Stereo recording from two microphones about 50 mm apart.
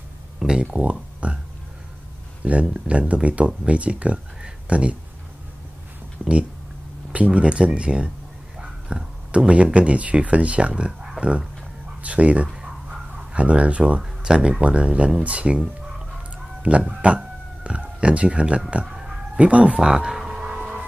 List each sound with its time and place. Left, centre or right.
0.7 s speech: right
2.4 s speech: right
6.2 s a sound: right
7.1 s speech: right
16.9 s a sound: centre
19.3 s music: right